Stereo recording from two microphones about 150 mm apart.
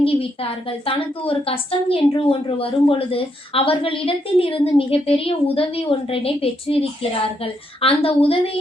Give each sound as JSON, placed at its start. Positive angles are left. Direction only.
{"t": 0.0, "sound": "a woman's voice", "side_deg": 40}